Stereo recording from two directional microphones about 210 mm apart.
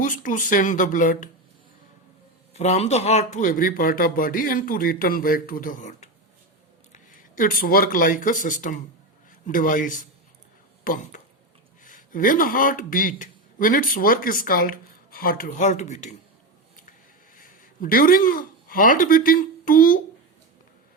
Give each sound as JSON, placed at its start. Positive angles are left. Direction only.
{"t": 0.0, "sound": "speech", "side_deg": 40}
{"t": 2.5, "sound": "speech", "side_deg": 30}
{"t": 17.3, "sound": "speech", "side_deg": 40}